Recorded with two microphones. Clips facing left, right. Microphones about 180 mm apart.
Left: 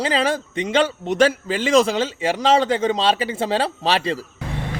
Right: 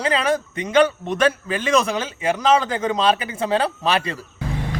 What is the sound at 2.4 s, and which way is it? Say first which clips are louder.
A man's voice: left 2 dB; 30° left (ahead or behind).